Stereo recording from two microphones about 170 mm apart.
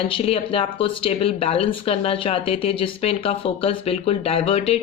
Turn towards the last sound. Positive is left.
turn(degrees=35)  # may be behind; listen again after turning